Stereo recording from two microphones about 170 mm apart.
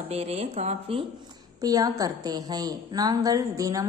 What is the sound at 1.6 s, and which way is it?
A woman's voice, 20° right (ahead or behind).